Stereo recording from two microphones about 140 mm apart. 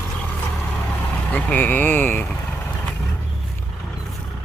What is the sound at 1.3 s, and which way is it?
Speech, 10° left (ahead or behind).